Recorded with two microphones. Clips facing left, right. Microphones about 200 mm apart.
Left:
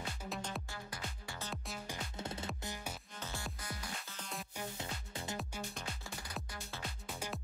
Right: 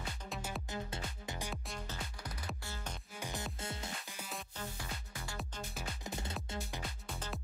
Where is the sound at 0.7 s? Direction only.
25° right (ahead or behind).